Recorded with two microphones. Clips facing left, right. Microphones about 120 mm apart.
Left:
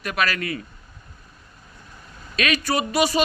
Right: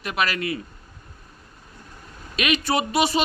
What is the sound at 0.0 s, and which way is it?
Speech, 25° right (ahead or behind).